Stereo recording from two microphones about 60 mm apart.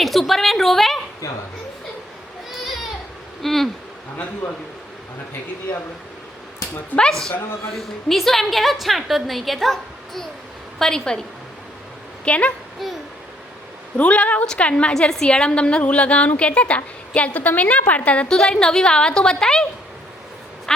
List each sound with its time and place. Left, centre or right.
0.0 s a woman's voice: centre
3.4 s a sound: centre
7.1 s a woman's voice: centre
10.8 s a woman's voice: centre
12.2 s a woman's voice: left
12.8 s a woman's voice: centre
13.9 s a woman's voice: left
20.7 s a woman's voice: centre